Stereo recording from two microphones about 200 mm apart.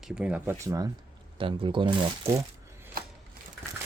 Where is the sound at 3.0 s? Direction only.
45° right (ahead or behind).